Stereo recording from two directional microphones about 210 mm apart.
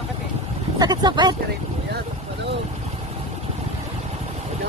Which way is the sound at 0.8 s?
20° right (ahead or behind).